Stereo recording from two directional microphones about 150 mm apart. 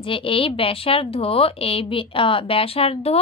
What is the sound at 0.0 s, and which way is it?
A woman's voice, 35° left (ahead or behind).